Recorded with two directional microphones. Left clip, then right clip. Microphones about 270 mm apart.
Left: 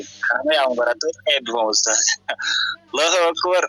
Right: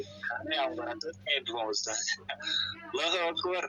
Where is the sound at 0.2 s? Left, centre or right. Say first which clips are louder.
Left 15 dB; left.